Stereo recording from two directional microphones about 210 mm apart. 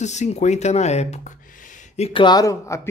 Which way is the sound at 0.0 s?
35° left (ahead or behind).